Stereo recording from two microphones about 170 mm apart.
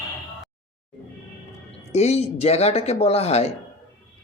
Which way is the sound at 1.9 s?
40° left (ahead or behind).